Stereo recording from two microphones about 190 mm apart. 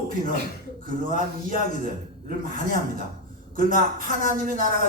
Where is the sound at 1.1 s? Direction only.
45° right (ahead or behind).